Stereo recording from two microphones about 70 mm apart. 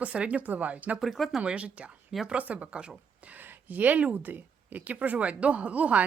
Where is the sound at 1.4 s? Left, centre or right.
Centre.